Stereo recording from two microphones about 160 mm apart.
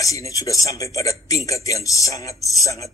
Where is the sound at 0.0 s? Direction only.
20° left (ahead or behind).